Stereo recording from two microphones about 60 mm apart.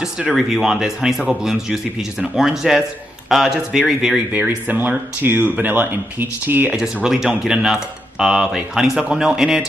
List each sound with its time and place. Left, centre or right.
0.3 s a man's voice: centre
4.3 s speech: right
6.8 s speech: centre